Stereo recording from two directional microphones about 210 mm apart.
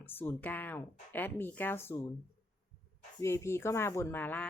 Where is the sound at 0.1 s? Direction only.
10° left (ahead or behind).